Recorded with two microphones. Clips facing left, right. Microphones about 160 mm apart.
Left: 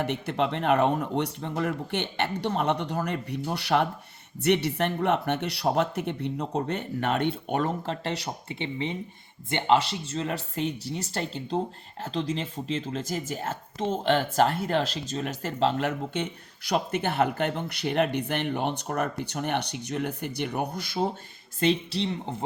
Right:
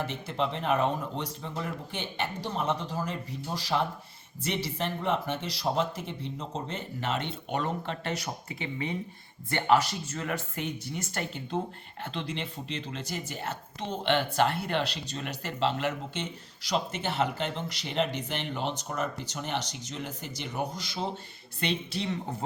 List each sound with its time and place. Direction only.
0.0 s speech: 70° left (ahead or behind); by 7.9 s 50° left (ahead or behind)
8.0 s speech: 30° left (ahead or behind); by 21.1 s 55° left (ahead or behind)
21.6 s speech: 40° left (ahead or behind)
22.0 s speech: 25° left (ahead or behind)